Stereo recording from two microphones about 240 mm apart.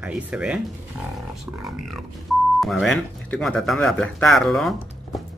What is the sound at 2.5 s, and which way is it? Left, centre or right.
Speech, centre.